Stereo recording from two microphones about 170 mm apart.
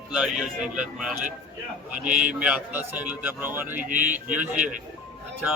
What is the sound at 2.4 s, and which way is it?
A man's voice, 10° right (ahead or behind).